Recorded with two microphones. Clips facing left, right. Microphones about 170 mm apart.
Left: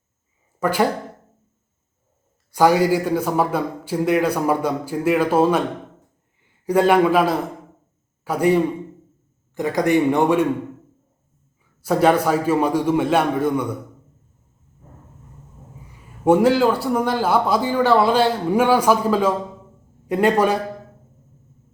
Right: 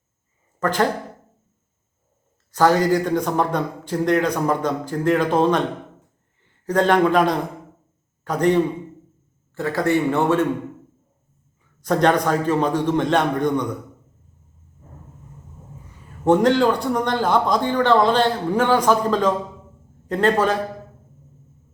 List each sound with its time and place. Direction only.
0.6 s speech: 10° left (ahead or behind)
2.5 s a man's voice: 10° left (ahead or behind)
11.8 s a man's voice: 5° left (ahead or behind)
16.2 s a man's voice: 10° left (ahead or behind)